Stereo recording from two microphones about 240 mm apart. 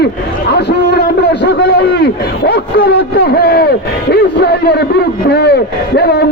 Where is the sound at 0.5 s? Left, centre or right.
Left.